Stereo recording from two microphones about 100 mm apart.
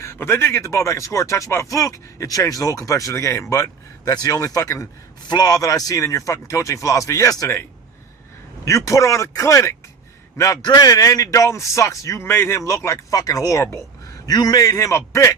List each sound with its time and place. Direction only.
0.0 s speech: 25° left (ahead or behind)
8.6 s speech: 30° left (ahead or behind)
14.3 s speech: 40° left (ahead or behind)